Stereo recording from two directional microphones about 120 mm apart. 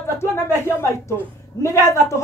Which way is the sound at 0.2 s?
20° left (ahead or behind).